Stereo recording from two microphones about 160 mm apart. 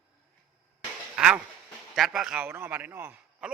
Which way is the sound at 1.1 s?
5° right (ahead or behind).